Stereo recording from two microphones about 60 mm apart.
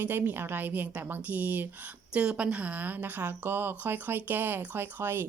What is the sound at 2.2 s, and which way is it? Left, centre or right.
A woman's voice, centre.